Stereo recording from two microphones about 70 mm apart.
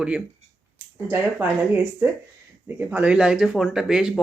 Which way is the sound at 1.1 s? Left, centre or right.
Right.